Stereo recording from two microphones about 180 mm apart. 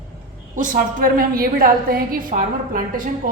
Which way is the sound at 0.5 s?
45° right (ahead or behind).